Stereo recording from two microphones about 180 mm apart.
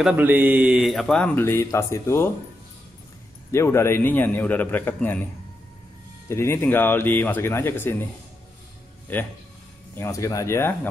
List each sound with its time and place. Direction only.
0.0 s speech: 10° right (ahead or behind); by 2.3 s 15° left (ahead or behind)
3.5 s a man's voice: 15° left (ahead or behind)
9.1 s a man's voice: 10° left (ahead or behind)